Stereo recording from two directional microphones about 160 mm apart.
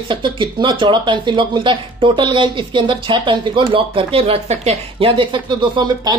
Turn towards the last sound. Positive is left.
turn(degrees=-25)  # may be behind; listen again after turning